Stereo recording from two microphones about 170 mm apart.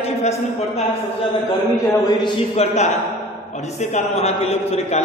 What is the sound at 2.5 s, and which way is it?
Speech, 40° left (ahead or behind).